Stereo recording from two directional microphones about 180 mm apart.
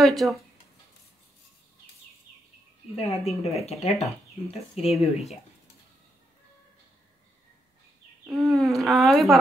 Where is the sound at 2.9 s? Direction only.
35° left (ahead or behind).